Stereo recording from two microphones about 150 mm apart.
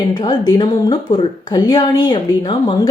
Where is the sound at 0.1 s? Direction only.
30° left (ahead or behind).